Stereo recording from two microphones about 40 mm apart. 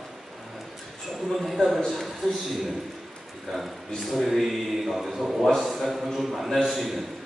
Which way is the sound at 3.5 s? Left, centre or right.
Centre.